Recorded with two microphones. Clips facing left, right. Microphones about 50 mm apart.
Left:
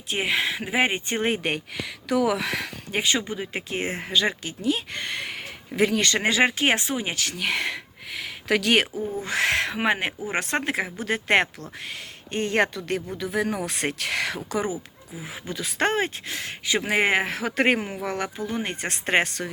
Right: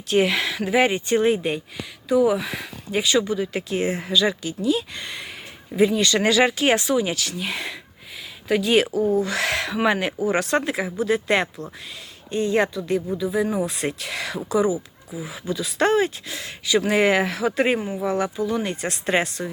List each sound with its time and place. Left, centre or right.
0.1 s speech: centre
1.3 s speech: left
2.9 s speech: left
6.1 s speech: left
7.3 s speech: left
8.1 s a sound: left
9.2 s speech: left